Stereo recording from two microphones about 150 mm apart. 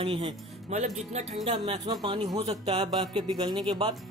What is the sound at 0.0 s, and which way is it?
Speech, 40° right (ahead or behind).